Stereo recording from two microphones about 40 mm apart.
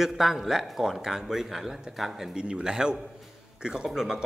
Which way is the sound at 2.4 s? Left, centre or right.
Right.